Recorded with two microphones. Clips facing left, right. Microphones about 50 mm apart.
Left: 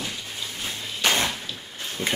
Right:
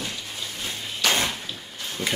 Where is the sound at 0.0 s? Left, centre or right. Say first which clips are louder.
Even; centre.